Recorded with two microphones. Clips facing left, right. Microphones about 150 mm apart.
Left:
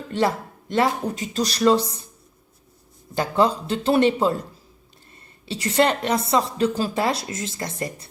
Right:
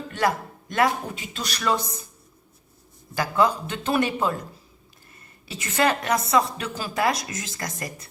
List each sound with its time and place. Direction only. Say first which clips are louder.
0.1 s a man's voice: left 2 dB; 30° left (ahead or behind)
1.1 s speech: left 8 dB; 40° left (ahead or behind)
3.2 s speech: left 2 dB; 30° left (ahead or behind)
5.5 s a woman's voice: left 3 dB; 30° left (ahead or behind)